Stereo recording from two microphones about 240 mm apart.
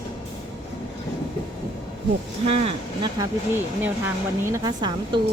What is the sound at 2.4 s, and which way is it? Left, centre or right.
Speech, right.